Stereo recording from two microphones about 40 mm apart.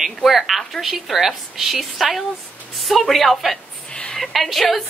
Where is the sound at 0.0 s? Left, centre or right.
Centre.